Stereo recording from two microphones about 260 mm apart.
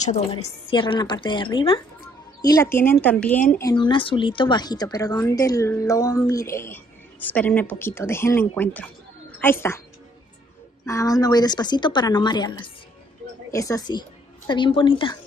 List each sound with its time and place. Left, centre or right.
0.0 s a woman's voice: left; by 9.8 s centre
10.9 s speech: centre